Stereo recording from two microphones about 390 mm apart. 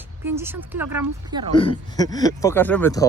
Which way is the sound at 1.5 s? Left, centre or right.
Centre.